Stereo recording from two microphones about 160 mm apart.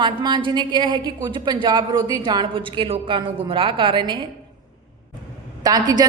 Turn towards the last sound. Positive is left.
turn(degrees=-25)  # may be behind; listen again after turning